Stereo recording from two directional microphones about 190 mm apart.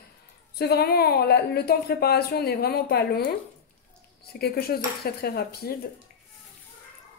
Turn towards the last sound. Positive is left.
turn(degrees=55)  # may be behind; listen again after turning